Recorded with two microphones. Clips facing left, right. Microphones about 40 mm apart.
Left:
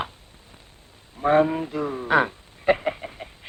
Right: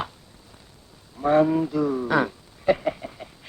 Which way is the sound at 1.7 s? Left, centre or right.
Left.